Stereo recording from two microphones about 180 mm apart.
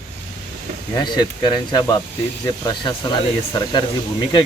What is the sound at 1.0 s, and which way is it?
Speech, 25° left (ahead or behind).